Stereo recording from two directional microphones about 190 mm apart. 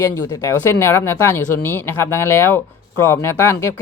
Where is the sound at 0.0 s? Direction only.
15° left (ahead or behind).